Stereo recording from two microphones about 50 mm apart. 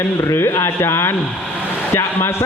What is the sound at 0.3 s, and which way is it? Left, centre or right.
Speech, left.